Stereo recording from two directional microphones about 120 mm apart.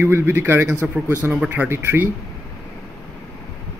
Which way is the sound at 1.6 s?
20° right (ahead or behind).